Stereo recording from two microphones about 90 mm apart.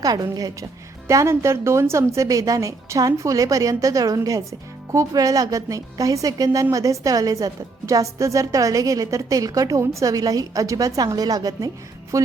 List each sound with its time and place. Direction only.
0.0 s a woman's voice: 45° right (ahead or behind)
1.0 s a woman's voice: 30° right (ahead or behind)